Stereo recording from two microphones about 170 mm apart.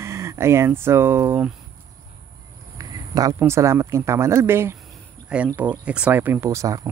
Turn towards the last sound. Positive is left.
turn(degrees=-20)  # may be behind; listen again after turning